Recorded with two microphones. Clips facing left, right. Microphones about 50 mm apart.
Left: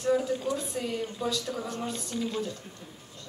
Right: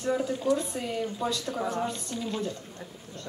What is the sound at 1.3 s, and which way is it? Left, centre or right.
Speech, centre.